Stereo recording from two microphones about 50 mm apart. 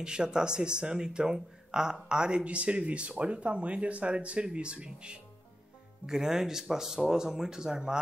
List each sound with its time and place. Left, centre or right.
0.0 s speech: centre